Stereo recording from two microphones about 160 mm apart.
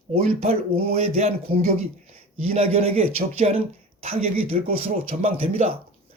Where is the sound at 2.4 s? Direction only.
40° right (ahead or behind).